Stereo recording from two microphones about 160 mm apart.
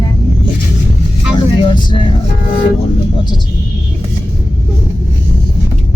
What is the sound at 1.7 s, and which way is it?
Speech, 35° left (ahead or behind).